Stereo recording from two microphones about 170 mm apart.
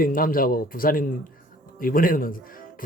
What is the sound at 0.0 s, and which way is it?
Speech, 55° left (ahead or behind).